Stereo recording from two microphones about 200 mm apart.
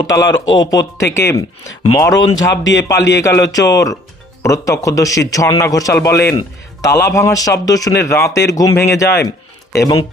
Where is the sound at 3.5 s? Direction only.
15° left (ahead or behind).